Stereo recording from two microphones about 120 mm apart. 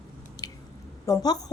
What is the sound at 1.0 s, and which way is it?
Speech, 30° left (ahead or behind).